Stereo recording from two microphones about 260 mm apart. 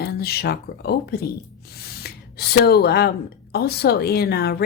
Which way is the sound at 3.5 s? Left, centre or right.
Left.